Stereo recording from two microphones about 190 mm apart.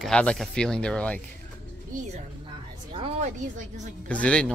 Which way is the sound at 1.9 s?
40° right (ahead or behind).